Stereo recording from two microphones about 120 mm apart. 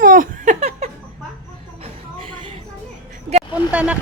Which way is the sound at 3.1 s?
65° right (ahead or behind).